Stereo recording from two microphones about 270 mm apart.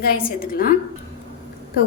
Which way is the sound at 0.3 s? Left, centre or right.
Left.